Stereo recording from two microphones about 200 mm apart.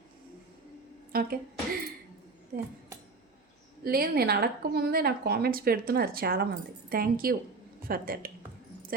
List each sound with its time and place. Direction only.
1.1 s speech: 50° right (ahead or behind)
2.5 s speech: 50° right (ahead or behind)
3.8 s speech: 50° right (ahead or behind)